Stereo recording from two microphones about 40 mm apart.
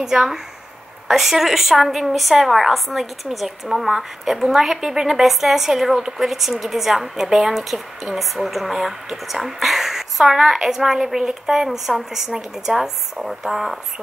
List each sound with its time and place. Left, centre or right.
0.0 s a woman's voice: centre